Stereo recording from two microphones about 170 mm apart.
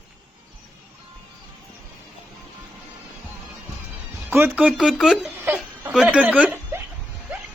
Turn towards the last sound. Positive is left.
turn(degrees=-10)  # may be behind; listen again after turning